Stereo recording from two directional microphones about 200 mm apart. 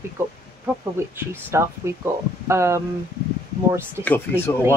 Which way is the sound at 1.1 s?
15° right (ahead or behind).